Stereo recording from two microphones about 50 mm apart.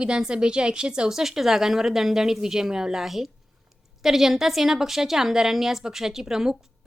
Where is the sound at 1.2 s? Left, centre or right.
Centre.